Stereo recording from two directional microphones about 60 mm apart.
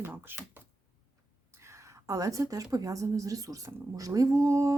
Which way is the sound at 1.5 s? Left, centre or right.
Right.